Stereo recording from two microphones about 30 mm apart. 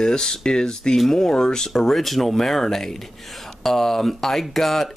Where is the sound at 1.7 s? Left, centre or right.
Centre.